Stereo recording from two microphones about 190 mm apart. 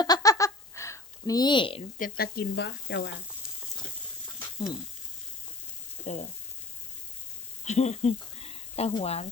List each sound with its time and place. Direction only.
0.0 s a sound: 20° left (ahead or behind)
2.0 s speech: 50° left (ahead or behind); by 3.1 s 70° left (ahead or behind)
6.1 s frying: 35° left (ahead or behind)
7.6 s speech: 40° left (ahead or behind)